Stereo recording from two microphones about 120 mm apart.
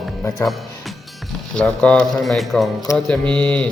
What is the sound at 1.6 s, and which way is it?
A man's voice, 10° left (ahead or behind).